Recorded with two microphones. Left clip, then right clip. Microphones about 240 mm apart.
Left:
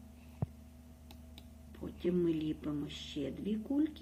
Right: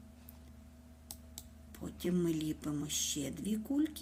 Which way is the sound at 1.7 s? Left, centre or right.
Right.